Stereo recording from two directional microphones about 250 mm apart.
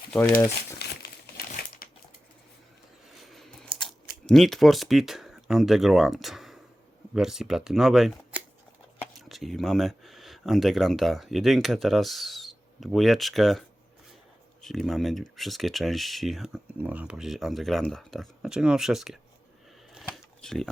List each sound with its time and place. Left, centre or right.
0.1 s speech: centre
0.3 s speech: left
1.4 s crumpling: left
3.2 s a sound: centre
7.1 s speech: centre
19.9 s camera: centre